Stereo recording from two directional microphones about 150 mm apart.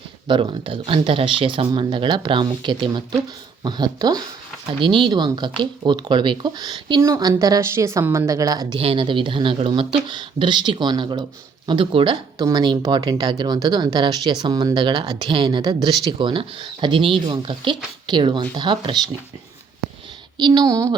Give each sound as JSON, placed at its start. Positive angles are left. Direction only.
{"t": 0.3, "sound": "speech", "side_deg": -35}
{"t": 8.8, "sound": "speech", "side_deg": -40}
{"t": 12.4, "sound": "speech", "side_deg": -25}
{"t": 20.4, "sound": "speech", "side_deg": -30}